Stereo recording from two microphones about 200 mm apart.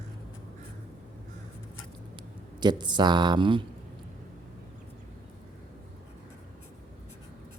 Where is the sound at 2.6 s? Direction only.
20° right (ahead or behind).